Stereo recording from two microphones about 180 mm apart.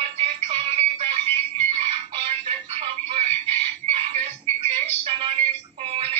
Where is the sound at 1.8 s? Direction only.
30° right (ahead or behind).